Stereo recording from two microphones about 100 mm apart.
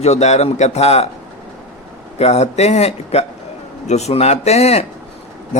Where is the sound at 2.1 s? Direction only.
90° left.